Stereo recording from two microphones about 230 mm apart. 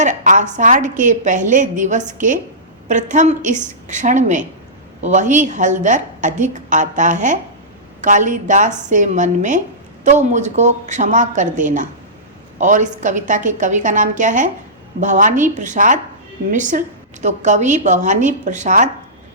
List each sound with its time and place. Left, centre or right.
0.0 s a woman's voice: right